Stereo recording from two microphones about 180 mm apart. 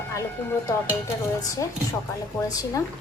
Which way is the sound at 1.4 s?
20° left (ahead or behind).